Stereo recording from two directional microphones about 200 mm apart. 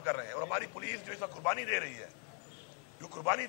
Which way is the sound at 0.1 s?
15° left (ahead or behind).